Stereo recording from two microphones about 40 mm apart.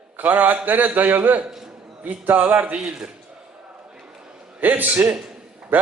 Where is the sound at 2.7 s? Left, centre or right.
Right.